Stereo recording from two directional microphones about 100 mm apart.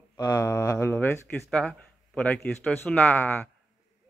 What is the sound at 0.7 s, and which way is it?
A man's voice, 20° left (ahead or behind).